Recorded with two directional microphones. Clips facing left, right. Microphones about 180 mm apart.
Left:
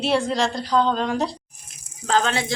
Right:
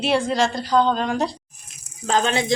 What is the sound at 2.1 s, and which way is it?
Speech, 20° right (ahead or behind).